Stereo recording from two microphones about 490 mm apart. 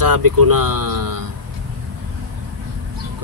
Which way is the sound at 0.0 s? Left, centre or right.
Right.